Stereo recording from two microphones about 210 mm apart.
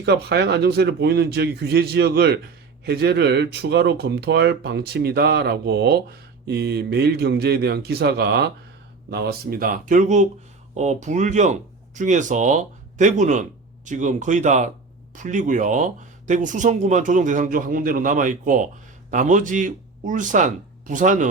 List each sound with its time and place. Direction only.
0.0 s speech: 50° right (ahead or behind)